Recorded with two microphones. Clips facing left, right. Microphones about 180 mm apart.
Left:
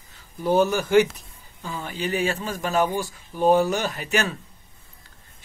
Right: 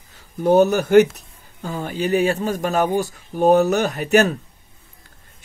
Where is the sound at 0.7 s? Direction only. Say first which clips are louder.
Right 5 dB; 65° right (ahead or behind).